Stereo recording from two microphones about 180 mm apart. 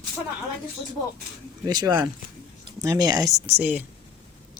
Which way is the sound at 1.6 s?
20° right (ahead or behind).